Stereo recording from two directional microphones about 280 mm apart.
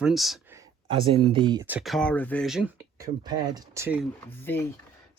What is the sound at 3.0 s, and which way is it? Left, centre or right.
Speech, centre.